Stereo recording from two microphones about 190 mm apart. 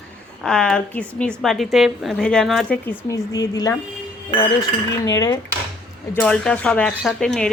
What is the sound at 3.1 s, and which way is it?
Speech, 20° left (ahead or behind).